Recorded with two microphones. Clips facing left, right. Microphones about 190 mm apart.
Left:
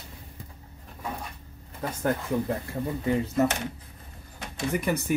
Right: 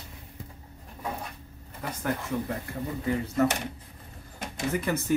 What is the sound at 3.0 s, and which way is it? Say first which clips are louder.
Speech: left 2 dB; 25° left (ahead or behind).